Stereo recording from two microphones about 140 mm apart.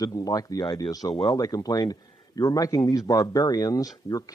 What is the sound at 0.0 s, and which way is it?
Speech, 25° left (ahead or behind).